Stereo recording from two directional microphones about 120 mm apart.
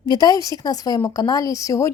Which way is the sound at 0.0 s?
35° left (ahead or behind).